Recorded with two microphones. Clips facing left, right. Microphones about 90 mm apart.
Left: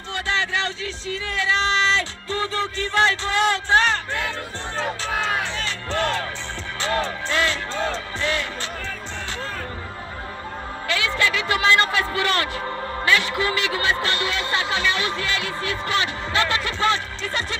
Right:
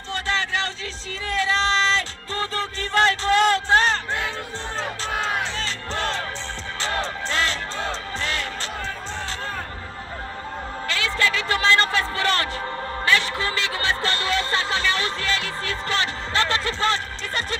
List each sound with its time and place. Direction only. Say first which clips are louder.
0.3 s speech: left 1 dB; 35° right (ahead or behind)
5.6 s music: left 3 dB; 30° right (ahead or behind)
8.2 s speech: left 5 dB; 35° right (ahead or behind)
10.9 s a sound: left 1 dB; 35° right (ahead or behind)
12.2 s speech: left 1 dB; 30° right (ahead or behind)
13.0 s music: left 1 dB; 30° right (ahead or behind)
13.4 s speech: left 3 dB; 30° right (ahead or behind)